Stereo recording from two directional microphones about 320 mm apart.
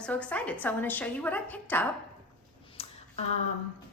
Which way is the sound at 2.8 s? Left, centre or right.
Centre.